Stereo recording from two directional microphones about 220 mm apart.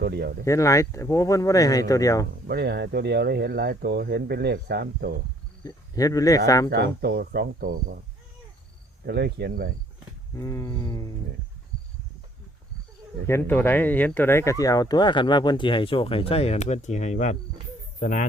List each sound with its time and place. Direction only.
0.0 s speech: 45° right (ahead or behind)
0.4 s speech: 15° left (ahead or behind)
2.5 s speech: 45° right (ahead or behind)
5.6 s speech: 15° left (ahead or behind)
6.7 s speech: 50° right (ahead or behind)
9.0 s speech: 50° right (ahead or behind)
10.3 s speech: 15° left (ahead or behind)
13.2 s speech: 10° left (ahead or behind); by 18.3 s 35° left (ahead or behind)